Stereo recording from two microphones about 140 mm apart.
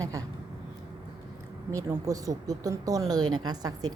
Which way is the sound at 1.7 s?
25° right (ahead or behind).